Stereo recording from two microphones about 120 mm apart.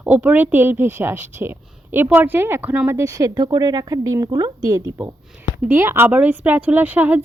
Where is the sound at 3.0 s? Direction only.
25° right (ahead or behind).